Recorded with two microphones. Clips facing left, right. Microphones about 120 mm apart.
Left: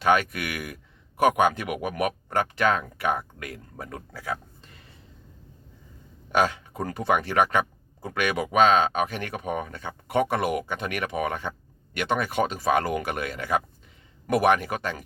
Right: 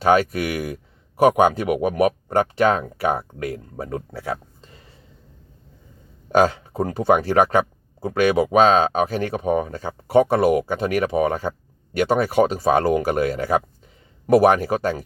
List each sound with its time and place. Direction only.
0.0 s speech: 35° right (ahead or behind)
6.3 s speech: 40° right (ahead or behind)